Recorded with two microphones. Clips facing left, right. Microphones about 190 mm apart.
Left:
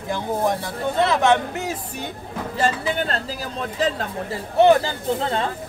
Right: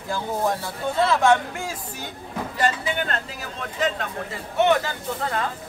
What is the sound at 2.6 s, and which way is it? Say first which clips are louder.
Speech: left 2 dB; 35° left (ahead or behind).